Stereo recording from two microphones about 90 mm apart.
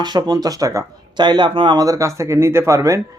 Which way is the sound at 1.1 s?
55° right (ahead or behind).